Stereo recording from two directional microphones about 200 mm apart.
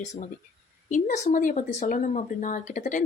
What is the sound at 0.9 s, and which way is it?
Speech, 40° left (ahead or behind).